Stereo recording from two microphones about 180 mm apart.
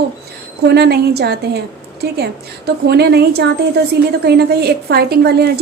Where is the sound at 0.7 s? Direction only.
65° right (ahead or behind).